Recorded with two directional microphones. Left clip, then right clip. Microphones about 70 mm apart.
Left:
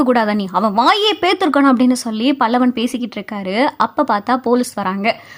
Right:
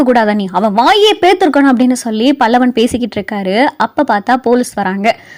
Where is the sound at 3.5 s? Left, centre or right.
Right.